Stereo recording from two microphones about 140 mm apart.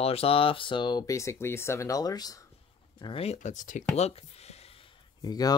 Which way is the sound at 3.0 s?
40° left (ahead or behind).